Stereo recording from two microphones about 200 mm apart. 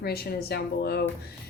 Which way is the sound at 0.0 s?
50° left (ahead or behind).